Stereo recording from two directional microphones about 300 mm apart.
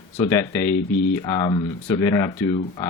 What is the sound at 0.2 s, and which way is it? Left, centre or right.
Speech, centre.